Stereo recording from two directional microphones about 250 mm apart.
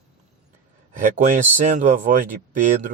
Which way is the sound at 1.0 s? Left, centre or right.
Right.